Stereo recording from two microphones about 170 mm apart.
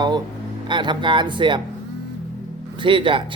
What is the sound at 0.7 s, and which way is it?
Speech, 25° right (ahead or behind).